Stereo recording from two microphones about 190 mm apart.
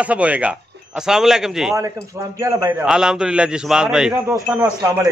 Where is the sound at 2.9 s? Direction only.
5° right (ahead or behind).